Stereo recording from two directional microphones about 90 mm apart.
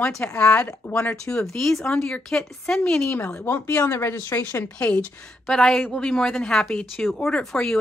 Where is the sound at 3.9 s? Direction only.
30° left (ahead or behind).